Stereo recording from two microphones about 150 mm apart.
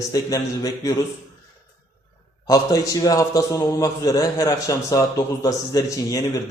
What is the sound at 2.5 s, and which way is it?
A man's voice, 25° left (ahead or behind).